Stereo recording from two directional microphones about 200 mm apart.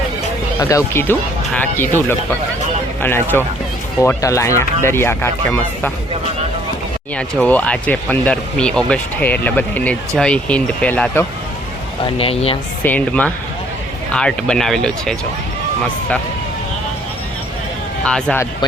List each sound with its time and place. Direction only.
0.6 s speech: 15° left (ahead or behind)
3.0 s speech: 10° left (ahead or behind)
7.2 s speech: 5° left (ahead or behind)
12.0 s speech: 25° left (ahead or behind)
12.8 s speech: 10° left (ahead or behind)
18.0 s speech: 5° left (ahead or behind)